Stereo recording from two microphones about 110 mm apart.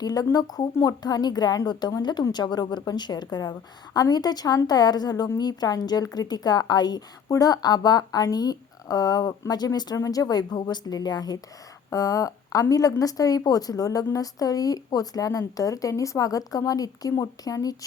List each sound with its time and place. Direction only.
0.0 s a woman's voice: 35° left (ahead or behind)